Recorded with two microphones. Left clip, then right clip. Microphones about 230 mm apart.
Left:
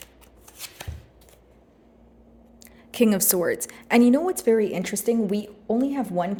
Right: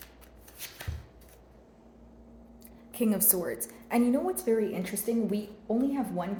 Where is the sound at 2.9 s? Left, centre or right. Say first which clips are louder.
Left 9 dB; left.